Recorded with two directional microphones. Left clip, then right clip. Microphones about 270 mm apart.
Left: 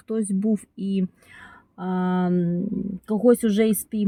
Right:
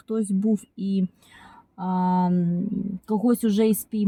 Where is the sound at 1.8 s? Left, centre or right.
Right.